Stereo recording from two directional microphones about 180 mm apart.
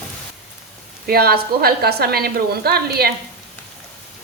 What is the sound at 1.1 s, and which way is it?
A woman's voice, 60° right (ahead or behind).